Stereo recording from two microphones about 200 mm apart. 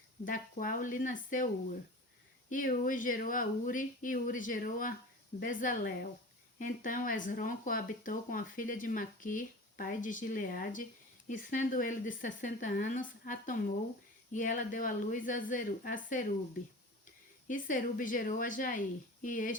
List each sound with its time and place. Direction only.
0.3 s speech: 45° left (ahead or behind)
2.5 s speech: 40° left (ahead or behind)
17.5 s speech: 40° left (ahead or behind)